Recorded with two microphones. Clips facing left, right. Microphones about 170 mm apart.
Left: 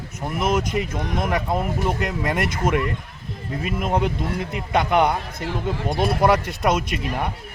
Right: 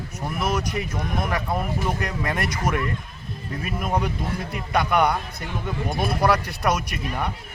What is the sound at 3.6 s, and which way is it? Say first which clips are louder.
Speech: left 3 dB; 25° left (ahead or behind).